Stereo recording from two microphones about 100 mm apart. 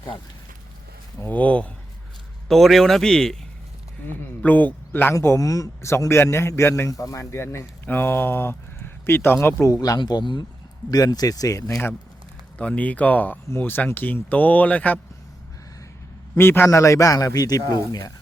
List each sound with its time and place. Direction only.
1.2 s speech: 15° left (ahead or behind)
2.5 s a man's voice: centre (ahead or behind)
4.0 s a man's voice: 15° left (ahead or behind)
9.6 s speech: 35° left (ahead or behind)
10.0 s speech: 50° left (ahead or behind); by 11.8 s 35° left (ahead or behind)
12.5 s speech: 15° left (ahead or behind)
16.4 s speech: 20° left (ahead or behind); by 18.1 s 40° left (ahead or behind)